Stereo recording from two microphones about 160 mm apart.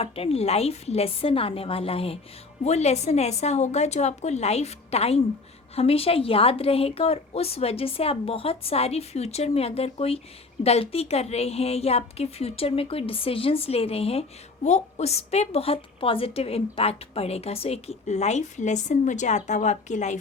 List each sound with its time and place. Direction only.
0.0 s a woman's voice: 40° left (ahead or behind)